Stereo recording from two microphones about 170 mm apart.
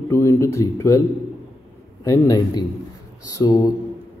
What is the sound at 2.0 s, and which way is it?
A man's voice, 20° left (ahead or behind).